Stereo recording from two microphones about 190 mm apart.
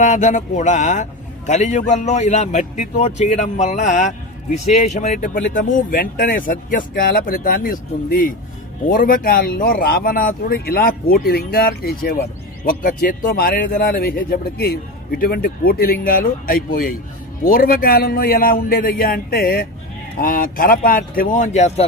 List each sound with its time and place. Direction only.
0.0 s a man's voice: 40° left (ahead or behind)